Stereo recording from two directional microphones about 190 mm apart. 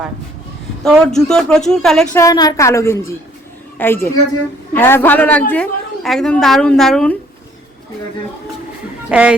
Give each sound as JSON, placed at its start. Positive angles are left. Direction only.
{"t": 0.9, "sound": "speech", "side_deg": 5}
{"t": 2.1, "sound": "a woman's voice", "side_deg": 20}
{"t": 9.0, "sound": "speech", "side_deg": -5}